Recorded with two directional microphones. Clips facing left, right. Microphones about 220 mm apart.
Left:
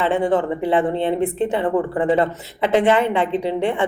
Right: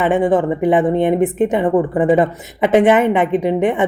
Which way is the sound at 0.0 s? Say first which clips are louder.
Right 4 dB; 15° right (ahead or behind).